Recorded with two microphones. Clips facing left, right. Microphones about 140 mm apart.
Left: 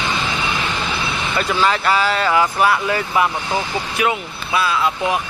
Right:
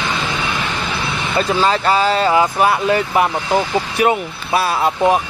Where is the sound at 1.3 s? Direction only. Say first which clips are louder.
Right 3 dB; 25° right (ahead or behind).